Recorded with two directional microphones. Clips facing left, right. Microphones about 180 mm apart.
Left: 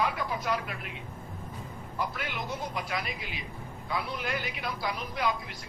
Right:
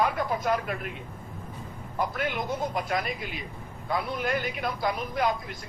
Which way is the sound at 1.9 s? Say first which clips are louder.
Right 6 dB; 50° right (ahead or behind).